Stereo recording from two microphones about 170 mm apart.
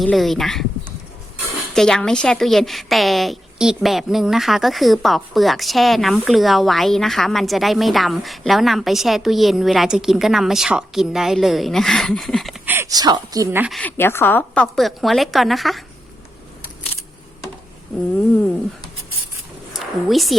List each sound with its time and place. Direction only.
0.0 s a woman's voice: centre (ahead or behind)
1.7 s a woman's voice: 5° left (ahead or behind)
12.6 s a woman's voice: 15° right (ahead or behind)
13.7 s a woman's voice: centre (ahead or behind)
13.9 s a woman's voice: 15° left (ahead or behind)
19.7 s speech: centre (ahead or behind)